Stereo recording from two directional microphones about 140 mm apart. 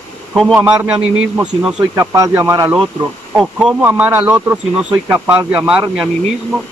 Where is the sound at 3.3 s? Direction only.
5° right (ahead or behind).